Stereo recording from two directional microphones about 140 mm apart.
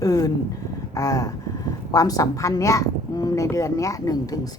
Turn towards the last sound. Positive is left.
turn(degrees=25)  # may be behind; listen again after turning